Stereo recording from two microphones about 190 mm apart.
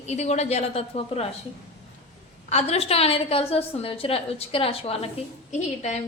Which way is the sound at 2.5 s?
35° left (ahead or behind).